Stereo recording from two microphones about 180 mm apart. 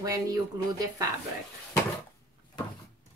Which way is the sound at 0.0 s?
20° right (ahead or behind).